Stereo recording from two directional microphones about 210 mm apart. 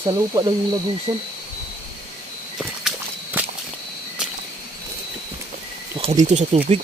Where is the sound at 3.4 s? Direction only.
10° right (ahead or behind).